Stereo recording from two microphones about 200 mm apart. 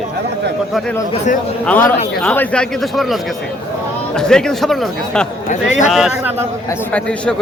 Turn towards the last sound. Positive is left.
turn(degrees=5)  # may be behind; listen again after turning